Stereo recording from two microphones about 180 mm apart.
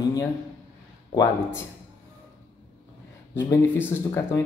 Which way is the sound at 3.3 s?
15° left (ahead or behind).